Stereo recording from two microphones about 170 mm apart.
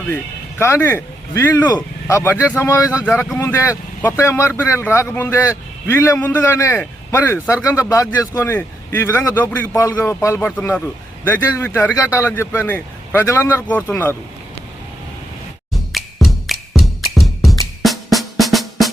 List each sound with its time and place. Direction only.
0.6 s a man's voice: 15° left (ahead or behind)
3.0 s a man's voice: 5° left (ahead or behind)
15.7 s music: centre (ahead or behind)
17.8 s drum: centre (ahead or behind)